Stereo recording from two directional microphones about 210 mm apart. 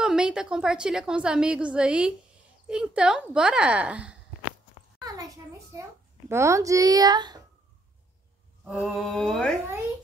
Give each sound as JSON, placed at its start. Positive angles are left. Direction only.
{"t": 0.0, "sound": "a woman's voice", "side_deg": -5}
{"t": 5.0, "sound": "a sound", "side_deg": -15}
{"t": 5.8, "sound": "a child's voice", "side_deg": -15}
{"t": 8.6, "sound": "a woman's voice", "side_deg": 0}